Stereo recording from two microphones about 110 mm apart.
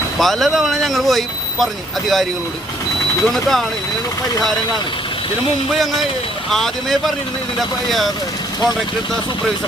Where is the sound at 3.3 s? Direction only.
Centre (ahead or behind).